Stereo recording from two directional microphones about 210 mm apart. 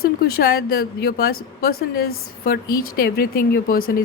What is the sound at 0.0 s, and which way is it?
A woman's voice, 45° left (ahead or behind).